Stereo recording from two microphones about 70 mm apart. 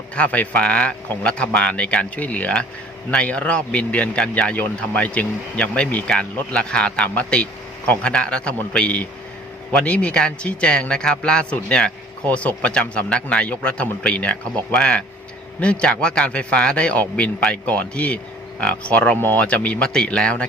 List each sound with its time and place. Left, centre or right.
0.2 s speech: centre